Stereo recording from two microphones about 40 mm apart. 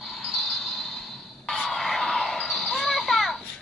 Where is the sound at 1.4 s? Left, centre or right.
Centre.